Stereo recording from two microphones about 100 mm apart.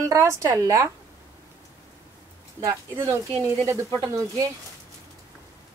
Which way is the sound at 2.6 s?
35° right (ahead or behind).